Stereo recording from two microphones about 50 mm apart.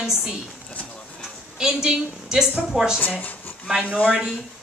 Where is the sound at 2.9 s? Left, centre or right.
Left.